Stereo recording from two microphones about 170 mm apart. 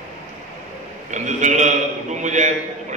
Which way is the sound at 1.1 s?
45° right (ahead or behind).